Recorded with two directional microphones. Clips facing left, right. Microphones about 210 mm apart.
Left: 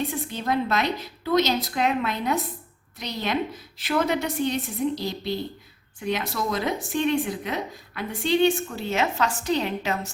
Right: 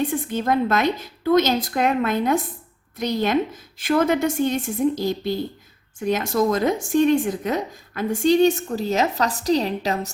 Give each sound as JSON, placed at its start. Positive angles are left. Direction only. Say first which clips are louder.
{"t": 0.1, "sound": "speech", "louder": "right 5 dB", "side_deg": -50}